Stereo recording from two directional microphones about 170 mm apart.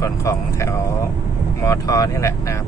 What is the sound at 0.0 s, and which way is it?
Speech, 15° left (ahead or behind).